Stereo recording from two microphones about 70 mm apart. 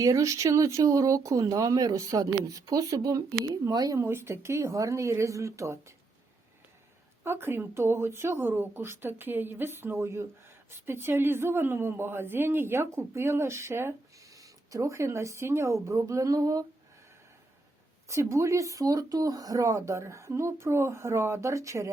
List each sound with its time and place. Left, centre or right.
0.0 s a woman's voice: right
3.9 s speech: right
7.3 s a woman's voice: right
14.3 s speech: right
18.1 s speech: right